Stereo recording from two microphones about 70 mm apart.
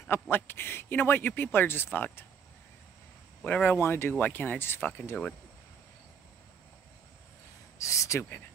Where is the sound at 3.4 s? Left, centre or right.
Left.